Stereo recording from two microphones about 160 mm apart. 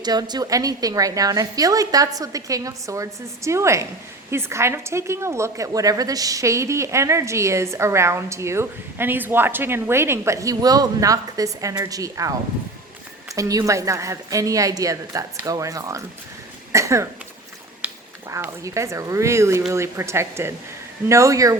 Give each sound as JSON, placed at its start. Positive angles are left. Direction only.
{"t": 0.0, "sound": "a woman's voice", "side_deg": -25}
{"t": 13.3, "sound": "a woman's voice", "side_deg": -20}
{"t": 16.7, "sound": "cough", "side_deg": -20}
{"t": 17.8, "sound": "a woman's voice", "side_deg": -15}